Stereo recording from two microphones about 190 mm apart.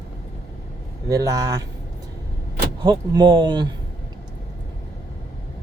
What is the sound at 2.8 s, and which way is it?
Speech, 20° right (ahead or behind).